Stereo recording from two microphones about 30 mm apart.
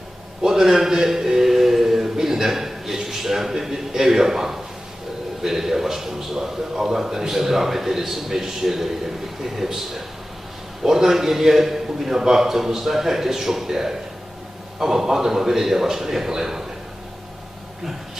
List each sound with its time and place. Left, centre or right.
0.4 s a man's voice: centre